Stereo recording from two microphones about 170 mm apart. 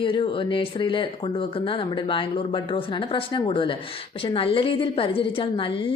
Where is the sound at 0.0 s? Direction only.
30° left (ahead or behind).